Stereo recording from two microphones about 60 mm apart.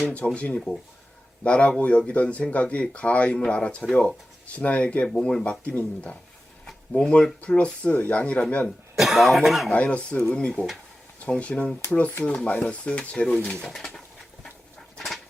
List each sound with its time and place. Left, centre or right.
0.0 s speech: left
9.0 s speech: centre
9.7 s speech: centre
14.9 s dog: centre